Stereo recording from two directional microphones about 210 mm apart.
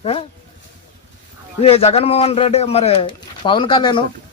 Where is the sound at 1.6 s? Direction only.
30° left (ahead or behind).